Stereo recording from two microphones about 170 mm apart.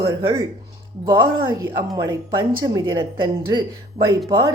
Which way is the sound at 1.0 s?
30° right (ahead or behind).